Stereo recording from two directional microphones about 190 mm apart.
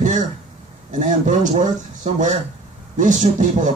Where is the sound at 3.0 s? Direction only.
40° right (ahead or behind).